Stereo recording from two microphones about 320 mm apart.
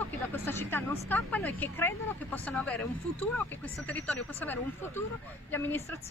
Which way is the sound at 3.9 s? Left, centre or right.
Centre.